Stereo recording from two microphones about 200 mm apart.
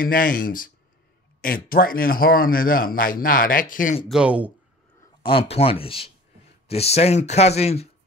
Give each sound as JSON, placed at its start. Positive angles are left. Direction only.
{"t": 0.0, "sound": "speech", "side_deg": 45}
{"t": 4.1, "sound": "speech", "side_deg": -5}
{"t": 5.2, "sound": "speech", "side_deg": 30}